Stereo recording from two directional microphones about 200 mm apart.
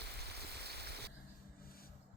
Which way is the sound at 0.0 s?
55° right (ahead or behind).